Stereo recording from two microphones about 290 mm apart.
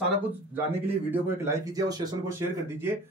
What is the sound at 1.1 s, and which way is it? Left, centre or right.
Speech, centre.